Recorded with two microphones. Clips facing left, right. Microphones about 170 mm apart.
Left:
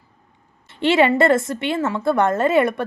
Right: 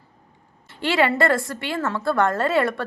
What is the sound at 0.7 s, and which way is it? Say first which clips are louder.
A woman's voice: left 5 dB; 25° left (ahead or behind).